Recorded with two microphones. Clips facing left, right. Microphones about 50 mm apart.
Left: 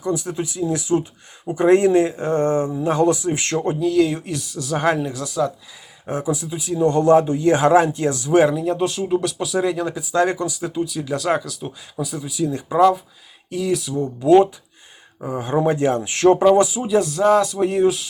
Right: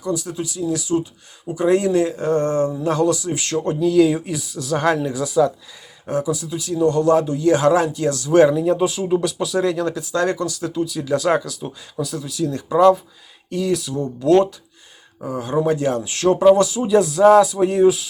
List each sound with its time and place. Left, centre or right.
0.0 s speech: left
3.8 s speech: centre
5.1 s speech: centre
6.1 s speech: left
6.8 s speech: left
8.4 s speech: centre
14.2 s speech: centre; by 16.4 s left
16.6 s speech: centre
16.9 s speech: centre